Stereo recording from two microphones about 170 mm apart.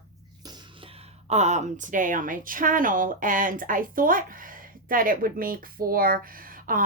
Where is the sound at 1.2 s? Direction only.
40° right (ahead or behind).